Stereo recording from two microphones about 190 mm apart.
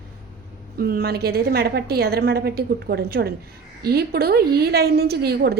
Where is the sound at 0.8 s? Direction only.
55° right (ahead or behind).